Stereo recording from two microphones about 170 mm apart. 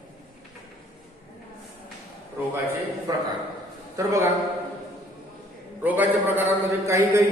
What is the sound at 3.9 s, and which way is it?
Speech, 20° right (ahead or behind).